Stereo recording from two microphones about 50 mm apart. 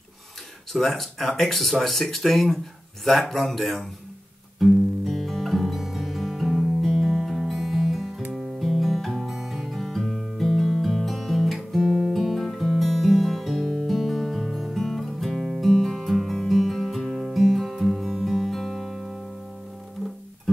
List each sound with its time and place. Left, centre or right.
0.7 s speech: centre
4.6 s music: centre